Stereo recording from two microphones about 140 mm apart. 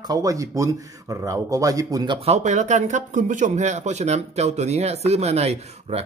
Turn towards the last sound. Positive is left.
turn(degrees=-50)  # may be behind; listen again after turning